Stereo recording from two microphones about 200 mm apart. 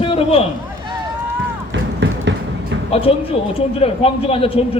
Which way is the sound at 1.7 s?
65° right (ahead or behind).